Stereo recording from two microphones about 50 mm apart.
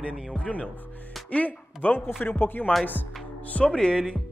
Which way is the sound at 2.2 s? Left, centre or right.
Left.